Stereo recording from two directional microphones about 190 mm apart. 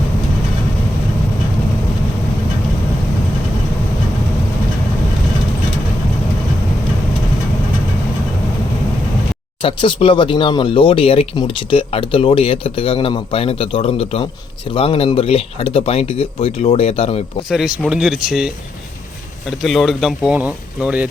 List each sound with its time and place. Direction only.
9.6 s speech: 25° left (ahead or behind)
17.5 s speech: 5° right (ahead or behind)